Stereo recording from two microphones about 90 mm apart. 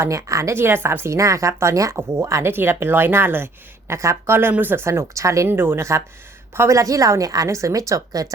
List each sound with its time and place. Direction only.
0.0 s a woman's voice: 35° right (ahead or behind)